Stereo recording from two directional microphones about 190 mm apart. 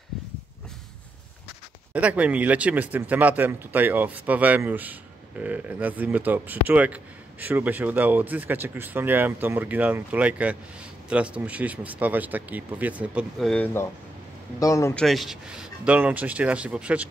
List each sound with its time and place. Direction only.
2.0 s speech: 5° right (ahead or behind)
14.6 s a man's voice: 15° left (ahead or behind)
15.0 s speech: centre (ahead or behind)